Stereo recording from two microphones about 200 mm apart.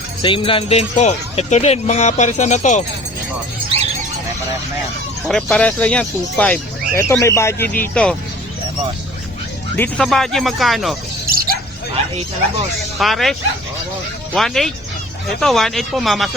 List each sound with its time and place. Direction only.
0.2 s speech: 25° left (ahead or behind)
5.3 s speech: 5° left (ahead or behind)
9.7 s speech: 5° left (ahead or behind)
11.3 s dog: 45° right (ahead or behind)
13.0 s speech: centre (ahead or behind)
14.3 s speech: centre (ahead or behind)